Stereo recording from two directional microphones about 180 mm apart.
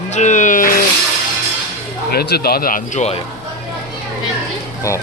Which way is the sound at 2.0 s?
60° left (ahead or behind).